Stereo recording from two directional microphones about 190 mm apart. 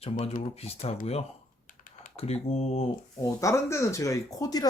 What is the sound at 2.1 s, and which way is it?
Speech, 35° left (ahead or behind).